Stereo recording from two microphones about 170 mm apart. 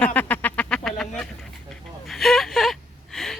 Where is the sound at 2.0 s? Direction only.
Centre (ahead or behind).